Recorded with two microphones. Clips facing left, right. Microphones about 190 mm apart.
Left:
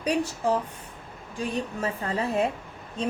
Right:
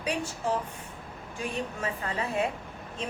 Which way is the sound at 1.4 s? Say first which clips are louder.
Left 4 dB; 35° left (ahead or behind).